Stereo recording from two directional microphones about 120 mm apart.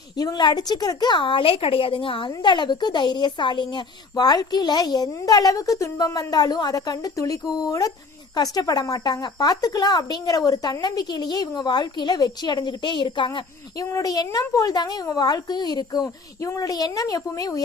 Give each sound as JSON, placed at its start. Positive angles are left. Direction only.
{"t": 0.2, "sound": "a woman's voice", "side_deg": 35}
{"t": 13.7, "sound": "a woman's voice", "side_deg": 30}